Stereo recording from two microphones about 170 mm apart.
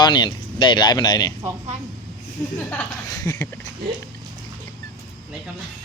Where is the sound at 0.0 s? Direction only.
25° left (ahead or behind).